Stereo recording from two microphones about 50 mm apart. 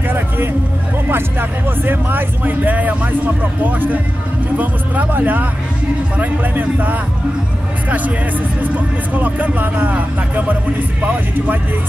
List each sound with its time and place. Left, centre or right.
1.0 s music: right
4.6 s music: right
6.1 s speech: right
8.7 s speech: right